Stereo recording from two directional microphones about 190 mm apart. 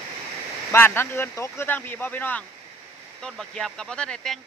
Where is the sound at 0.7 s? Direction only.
10° left (ahead or behind).